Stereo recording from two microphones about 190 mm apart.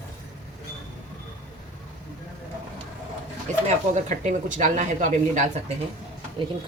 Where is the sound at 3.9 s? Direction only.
40° right (ahead or behind).